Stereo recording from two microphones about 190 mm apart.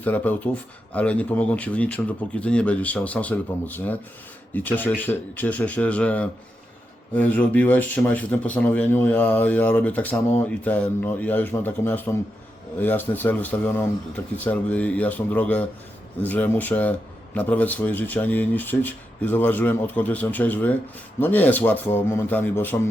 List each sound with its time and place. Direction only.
0.0 s speech: 10° left (ahead or behind)